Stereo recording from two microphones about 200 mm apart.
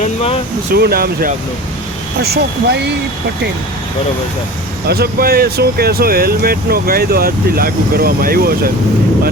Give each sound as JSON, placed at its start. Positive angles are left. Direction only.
{"t": 0.0, "sound": "air conditioning", "side_deg": 30}
{"t": 0.7, "sound": "speech", "side_deg": -50}
{"t": 4.9, "sound": "speech", "side_deg": -50}